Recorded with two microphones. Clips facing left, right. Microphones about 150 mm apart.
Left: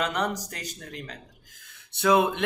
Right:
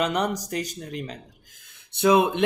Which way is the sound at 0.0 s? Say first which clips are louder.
Right 3 dB; 15° right (ahead or behind).